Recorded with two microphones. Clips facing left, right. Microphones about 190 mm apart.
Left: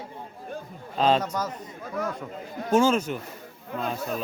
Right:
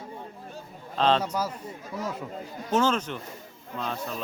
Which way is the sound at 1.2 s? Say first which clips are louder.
Even; 10° right (ahead or behind).